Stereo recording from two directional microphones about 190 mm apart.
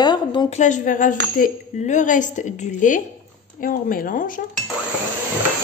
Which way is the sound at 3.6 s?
45° left (ahead or behind).